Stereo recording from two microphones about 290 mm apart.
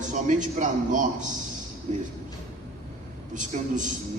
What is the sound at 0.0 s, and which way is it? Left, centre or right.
A man's voice, right.